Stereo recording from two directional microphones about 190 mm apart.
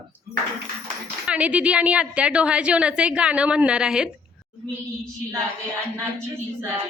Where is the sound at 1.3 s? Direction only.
5° right (ahead or behind).